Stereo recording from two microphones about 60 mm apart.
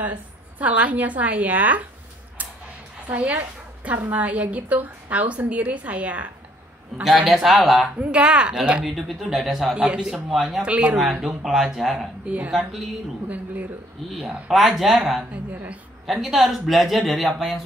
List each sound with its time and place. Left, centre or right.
0.0 s a woman's voice: right
3.1 s a woman's voice: right
7.0 s a woman's voice: centre
7.9 s speech: centre
8.8 s a woman's voice: centre
10.7 s a woman's voice: right
11.0 s a woman's voice: centre
14.5 s a woman's voice: centre
15.3 s a woman's voice: right
16.1 s a woman's voice: centre